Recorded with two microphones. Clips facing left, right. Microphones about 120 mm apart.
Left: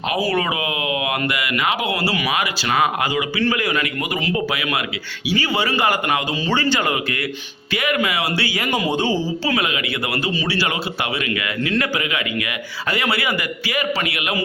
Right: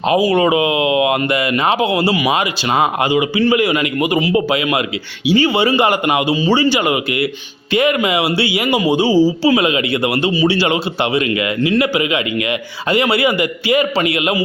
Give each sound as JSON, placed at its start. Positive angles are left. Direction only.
{"t": 0.2, "sound": "a man's voice", "side_deg": -20}
{"t": 9.6, "sound": "a man's voice", "side_deg": -25}